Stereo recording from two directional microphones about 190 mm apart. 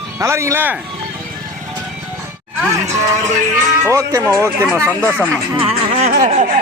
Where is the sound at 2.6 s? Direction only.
15° right (ahead or behind).